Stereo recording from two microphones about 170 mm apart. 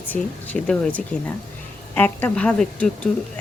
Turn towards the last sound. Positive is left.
turn(degrees=5)  # may be behind; listen again after turning